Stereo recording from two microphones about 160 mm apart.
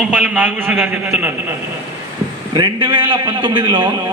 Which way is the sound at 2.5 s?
30° right (ahead or behind).